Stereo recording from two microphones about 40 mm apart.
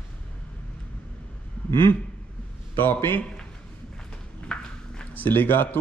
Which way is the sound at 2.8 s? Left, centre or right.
Left.